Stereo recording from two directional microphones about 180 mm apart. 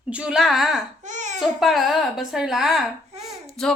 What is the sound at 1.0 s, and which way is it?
Babbling, 40° right (ahead or behind).